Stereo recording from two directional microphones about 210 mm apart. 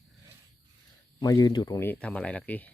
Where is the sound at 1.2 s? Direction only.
15° left (ahead or behind).